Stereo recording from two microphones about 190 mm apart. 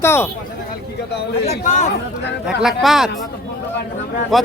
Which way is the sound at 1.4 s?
40° left (ahead or behind).